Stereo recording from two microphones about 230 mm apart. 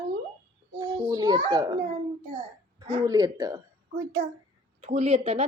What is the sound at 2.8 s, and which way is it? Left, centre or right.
Speech, centre.